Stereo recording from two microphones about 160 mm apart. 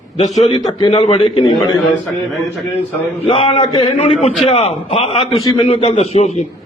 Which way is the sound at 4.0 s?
45° left (ahead or behind).